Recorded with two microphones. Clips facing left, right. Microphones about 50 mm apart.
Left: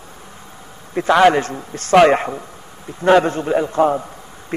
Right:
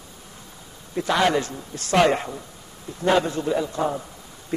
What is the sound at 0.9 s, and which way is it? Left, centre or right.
A man's voice, left.